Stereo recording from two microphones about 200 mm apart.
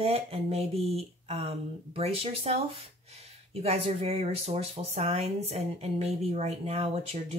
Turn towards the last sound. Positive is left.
turn(degrees=-30)  # may be behind; listen again after turning